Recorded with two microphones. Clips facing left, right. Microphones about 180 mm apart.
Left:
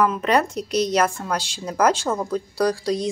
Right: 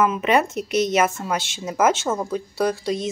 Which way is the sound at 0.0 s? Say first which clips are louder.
Even; 5° right (ahead or behind).